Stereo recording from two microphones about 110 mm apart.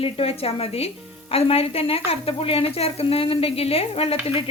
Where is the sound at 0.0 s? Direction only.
60° left (ahead or behind).